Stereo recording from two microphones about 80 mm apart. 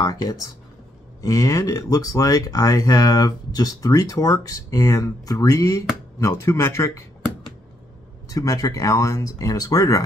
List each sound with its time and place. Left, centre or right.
0.0 s speech: left
8.3 s speech: left